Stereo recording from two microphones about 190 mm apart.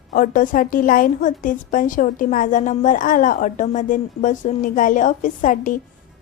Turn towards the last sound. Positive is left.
turn(degrees=45)  # may be behind; listen again after turning